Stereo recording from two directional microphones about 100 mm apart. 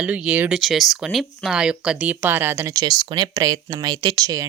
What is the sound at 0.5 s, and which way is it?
Speech, centre (ahead or behind).